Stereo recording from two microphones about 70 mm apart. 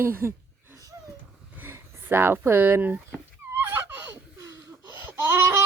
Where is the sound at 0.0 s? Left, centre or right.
Right.